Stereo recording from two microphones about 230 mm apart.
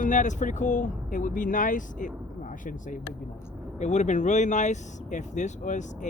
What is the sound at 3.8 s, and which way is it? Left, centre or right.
Speech, left.